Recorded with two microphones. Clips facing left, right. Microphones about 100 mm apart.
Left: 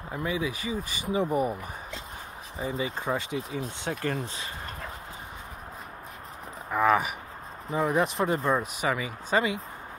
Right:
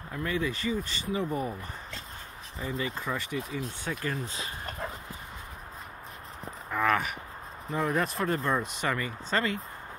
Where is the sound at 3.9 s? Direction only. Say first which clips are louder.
Left 3 dB; 45° left (ahead or behind).